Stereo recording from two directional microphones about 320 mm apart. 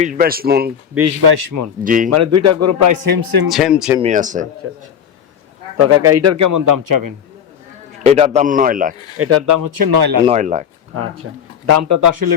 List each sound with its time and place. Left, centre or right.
0.0 s a man's voice: right
1.5 s speech: right
1.8 s a man's voice: right
2.0 s speech: right
3.5 s speech: centre
4.0 s a man's voice: right
4.6 s speech: right
8.0 s a man's voice: centre
9.1 s speech: right
9.5 s speech: right
10.2 s a man's voice: right
10.9 s speech: right